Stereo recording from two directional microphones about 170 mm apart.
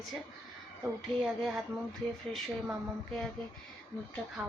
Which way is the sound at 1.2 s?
Centre (ahead or behind).